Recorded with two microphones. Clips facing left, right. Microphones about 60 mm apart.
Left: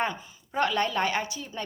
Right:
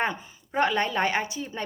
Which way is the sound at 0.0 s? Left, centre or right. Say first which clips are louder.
Right 2 dB; right.